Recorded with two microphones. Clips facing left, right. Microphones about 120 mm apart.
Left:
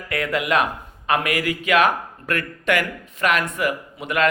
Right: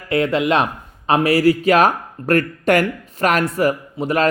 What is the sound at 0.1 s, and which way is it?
Speech, 25° right (ahead or behind).